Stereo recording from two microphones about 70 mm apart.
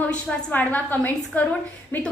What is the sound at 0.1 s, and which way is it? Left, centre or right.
A woman's voice, left.